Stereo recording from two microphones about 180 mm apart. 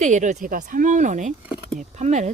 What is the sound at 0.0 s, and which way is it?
Speech, 40° right (ahead or behind).